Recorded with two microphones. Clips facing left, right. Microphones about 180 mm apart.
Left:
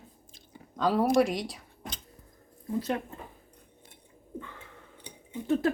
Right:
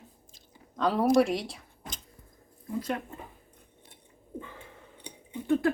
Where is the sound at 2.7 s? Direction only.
25° left (ahead or behind).